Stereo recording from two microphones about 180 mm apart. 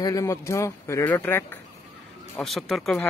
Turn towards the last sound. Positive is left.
turn(degrees=0)  # may be behind; listen again after turning